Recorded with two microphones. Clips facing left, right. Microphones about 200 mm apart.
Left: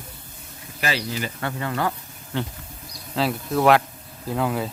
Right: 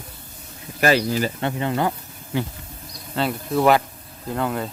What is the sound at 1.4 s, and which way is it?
Speech, 20° right (ahead or behind).